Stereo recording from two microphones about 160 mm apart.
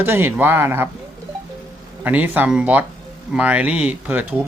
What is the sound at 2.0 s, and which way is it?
Speech, 10° right (ahead or behind).